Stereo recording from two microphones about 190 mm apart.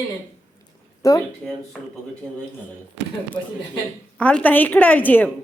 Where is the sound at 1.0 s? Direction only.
15° left (ahead or behind).